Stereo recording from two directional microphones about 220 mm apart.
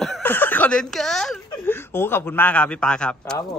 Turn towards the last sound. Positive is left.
turn(degrees=5)  # may be behind; listen again after turning